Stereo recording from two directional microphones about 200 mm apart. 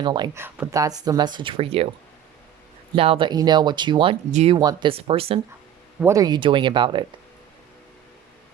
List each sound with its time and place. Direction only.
0.0 s speech: 20° right (ahead or behind)
2.9 s speech: 25° right (ahead or behind)
4.3 s speech: 35° right (ahead or behind)
4.5 s speech: 20° right (ahead or behind)
6.0 s speech: 15° right (ahead or behind)